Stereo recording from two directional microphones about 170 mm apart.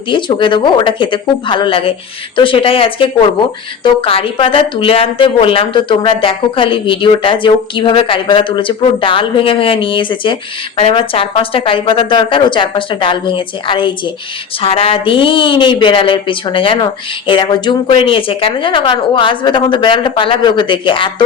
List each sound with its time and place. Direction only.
0.1 s speech: 30° left (ahead or behind)